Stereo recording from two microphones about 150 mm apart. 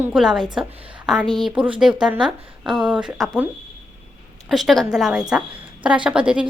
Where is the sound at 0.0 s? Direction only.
5° right (ahead or behind).